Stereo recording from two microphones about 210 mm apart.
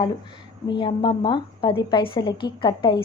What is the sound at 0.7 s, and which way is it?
A woman's voice, 20° left (ahead or behind).